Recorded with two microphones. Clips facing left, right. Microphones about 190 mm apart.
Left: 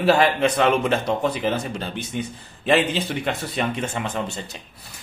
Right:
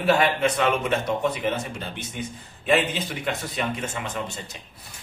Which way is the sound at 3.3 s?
30° left (ahead or behind).